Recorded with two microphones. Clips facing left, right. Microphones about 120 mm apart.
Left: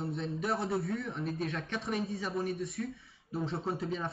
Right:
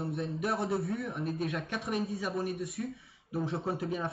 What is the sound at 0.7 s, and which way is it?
Speech, 25° right (ahead or behind).